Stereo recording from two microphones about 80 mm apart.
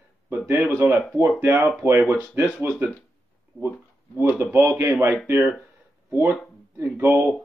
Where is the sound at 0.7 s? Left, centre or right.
Right.